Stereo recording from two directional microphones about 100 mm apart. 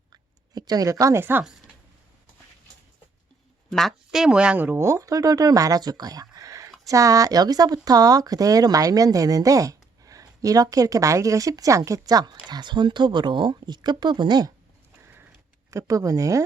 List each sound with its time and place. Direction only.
0.1 s a sound: 40° right (ahead or behind); by 1.5 s 20° right (ahead or behind)
3.7 s speech: centre (ahead or behind); by 14.5 s 45° right (ahead or behind)
15.0 s sniff: 20° right (ahead or behind)
15.7 s speech: 35° right (ahead or behind)